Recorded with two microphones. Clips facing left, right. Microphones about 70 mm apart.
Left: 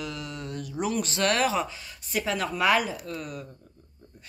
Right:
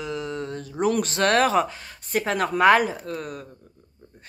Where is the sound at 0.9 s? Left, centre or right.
Right.